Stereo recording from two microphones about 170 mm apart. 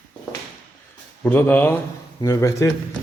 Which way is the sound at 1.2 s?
10° left (ahead or behind).